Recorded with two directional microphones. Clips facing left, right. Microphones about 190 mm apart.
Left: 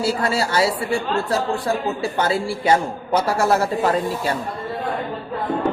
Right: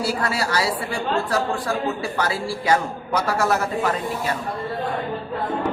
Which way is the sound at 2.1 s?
25° left (ahead or behind).